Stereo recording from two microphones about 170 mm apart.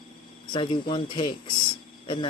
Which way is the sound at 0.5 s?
30° left (ahead or behind).